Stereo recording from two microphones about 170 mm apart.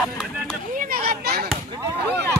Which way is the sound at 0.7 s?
55° right (ahead or behind).